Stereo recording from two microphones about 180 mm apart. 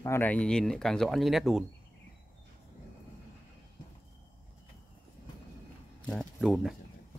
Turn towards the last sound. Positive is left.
turn(degrees=0)  # may be behind; listen again after turning